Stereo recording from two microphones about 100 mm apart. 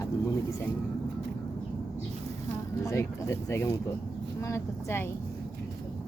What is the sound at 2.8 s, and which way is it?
Speech, 30° left (ahead or behind).